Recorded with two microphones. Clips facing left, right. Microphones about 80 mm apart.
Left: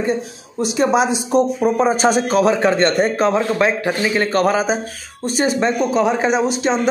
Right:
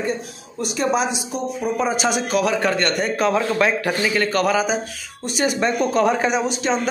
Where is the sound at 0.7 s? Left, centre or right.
Left.